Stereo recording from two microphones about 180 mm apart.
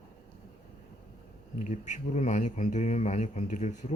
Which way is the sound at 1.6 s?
40° left (ahead or behind).